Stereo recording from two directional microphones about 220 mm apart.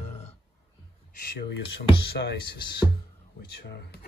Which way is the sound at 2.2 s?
50° left (ahead or behind).